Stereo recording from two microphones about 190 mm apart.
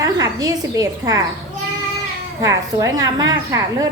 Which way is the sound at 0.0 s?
20° right (ahead or behind).